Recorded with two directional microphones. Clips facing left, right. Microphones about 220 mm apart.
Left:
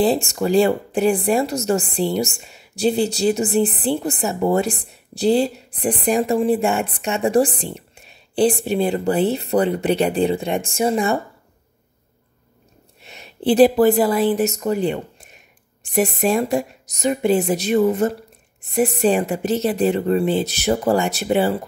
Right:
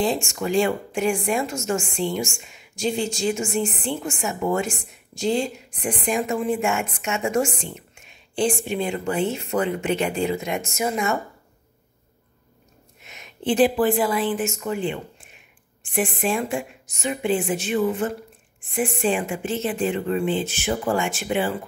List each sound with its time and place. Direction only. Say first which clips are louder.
0.0 s speech: left 5 dB; 35° left (ahead or behind)
13.0 s speech: left 6 dB; 35° left (ahead or behind)